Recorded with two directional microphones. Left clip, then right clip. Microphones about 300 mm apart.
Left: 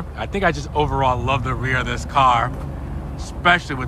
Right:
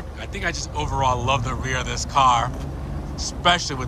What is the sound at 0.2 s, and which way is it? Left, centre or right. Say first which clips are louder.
Speech: left 7 dB; centre.